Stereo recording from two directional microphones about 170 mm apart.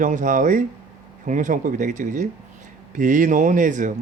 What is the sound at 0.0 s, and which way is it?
Speech, 45° right (ahead or behind).